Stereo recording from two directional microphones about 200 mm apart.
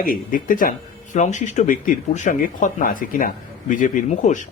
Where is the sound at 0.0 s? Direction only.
45° left (ahead or behind).